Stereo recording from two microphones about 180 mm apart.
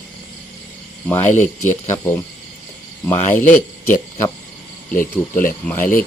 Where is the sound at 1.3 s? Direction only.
40° left (ahead or behind).